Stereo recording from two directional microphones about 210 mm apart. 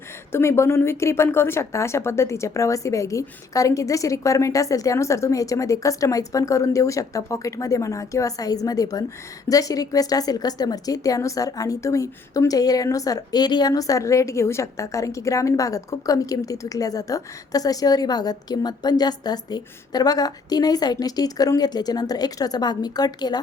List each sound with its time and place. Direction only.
0.3 s a woman's voice: 10° left (ahead or behind)